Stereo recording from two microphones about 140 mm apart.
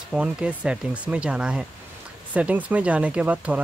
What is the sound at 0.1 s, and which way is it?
Speech, 10° right (ahead or behind).